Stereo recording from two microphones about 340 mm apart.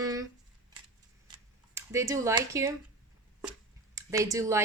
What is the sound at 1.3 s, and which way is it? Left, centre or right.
Computer keyboard, centre.